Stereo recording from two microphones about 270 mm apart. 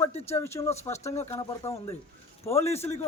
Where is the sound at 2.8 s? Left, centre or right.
Left.